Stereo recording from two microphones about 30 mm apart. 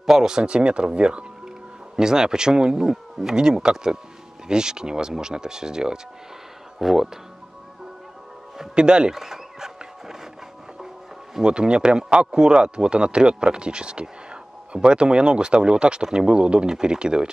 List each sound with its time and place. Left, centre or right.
0.0 s speech: centre
0.4 s speech: right
2.0 s speech: right
6.8 s speech: centre
8.7 s speech: right
9.1 s a sound: centre
11.4 s speech: right